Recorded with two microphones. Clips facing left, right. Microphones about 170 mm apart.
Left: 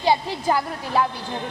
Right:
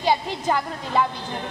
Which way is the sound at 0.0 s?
15° left (ahead or behind).